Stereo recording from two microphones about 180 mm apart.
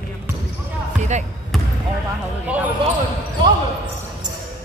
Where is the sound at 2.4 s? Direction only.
10° right (ahead or behind).